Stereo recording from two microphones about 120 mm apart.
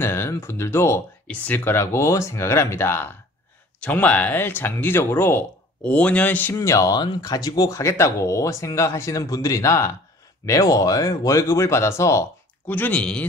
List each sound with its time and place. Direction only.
0.0 s speech: 20° left (ahead or behind)
6.5 s speech: 25° left (ahead or behind); by 13.3 s 10° left (ahead or behind)